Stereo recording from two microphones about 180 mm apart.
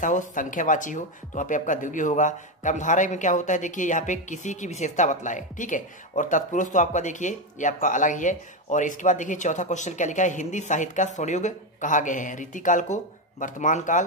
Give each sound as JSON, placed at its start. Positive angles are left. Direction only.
{"t": 0.0, "sound": "speech", "side_deg": 45}